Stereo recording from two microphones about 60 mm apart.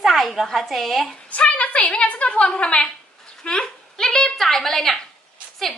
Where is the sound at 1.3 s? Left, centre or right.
Left.